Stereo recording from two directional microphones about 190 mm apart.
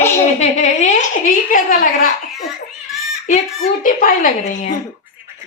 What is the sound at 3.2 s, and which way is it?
A child's voice, 40° left (ahead or behind).